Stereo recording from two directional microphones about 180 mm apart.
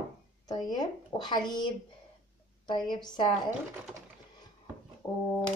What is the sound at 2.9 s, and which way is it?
Speech, 25° left (ahead or behind).